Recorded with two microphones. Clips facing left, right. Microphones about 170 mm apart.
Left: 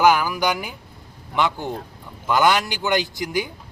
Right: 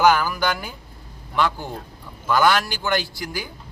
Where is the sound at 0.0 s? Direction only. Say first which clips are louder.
Left 1 dB; 10° left (ahead or behind).